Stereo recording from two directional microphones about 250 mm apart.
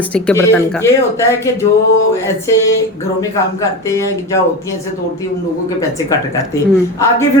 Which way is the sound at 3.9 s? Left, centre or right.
Centre.